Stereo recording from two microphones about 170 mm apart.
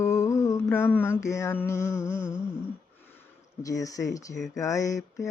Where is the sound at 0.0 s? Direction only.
20° left (ahead or behind).